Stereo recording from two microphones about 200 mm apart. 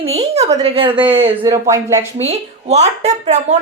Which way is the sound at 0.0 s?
30° right (ahead or behind).